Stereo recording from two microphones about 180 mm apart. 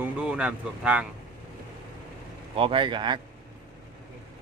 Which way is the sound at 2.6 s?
30° right (ahead or behind).